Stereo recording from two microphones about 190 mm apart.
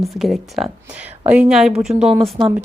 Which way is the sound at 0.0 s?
Centre (ahead or behind).